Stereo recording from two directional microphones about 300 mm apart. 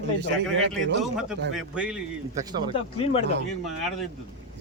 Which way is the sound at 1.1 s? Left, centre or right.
Centre.